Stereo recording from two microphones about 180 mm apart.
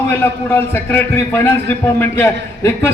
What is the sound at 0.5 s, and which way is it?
A man's voice, 15° left (ahead or behind).